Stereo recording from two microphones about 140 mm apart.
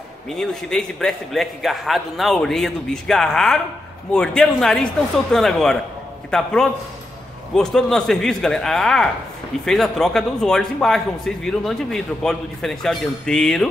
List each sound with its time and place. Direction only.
0.3 s speech: 5° left (ahead or behind)